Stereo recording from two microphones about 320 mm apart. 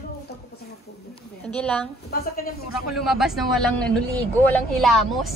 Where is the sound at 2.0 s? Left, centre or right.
Left.